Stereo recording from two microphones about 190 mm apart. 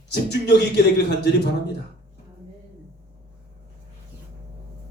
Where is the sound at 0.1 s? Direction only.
60° left (ahead or behind).